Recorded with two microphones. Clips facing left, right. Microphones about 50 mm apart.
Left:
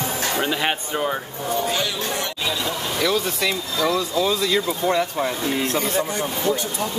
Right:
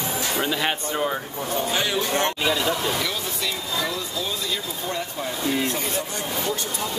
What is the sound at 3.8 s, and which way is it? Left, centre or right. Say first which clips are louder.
Speech: left 8 dB; left.